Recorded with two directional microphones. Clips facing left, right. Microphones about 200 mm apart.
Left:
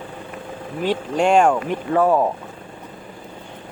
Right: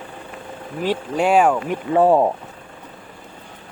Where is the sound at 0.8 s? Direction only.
5° right (ahead or behind).